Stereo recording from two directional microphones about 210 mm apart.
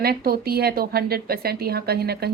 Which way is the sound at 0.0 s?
45° right (ahead or behind).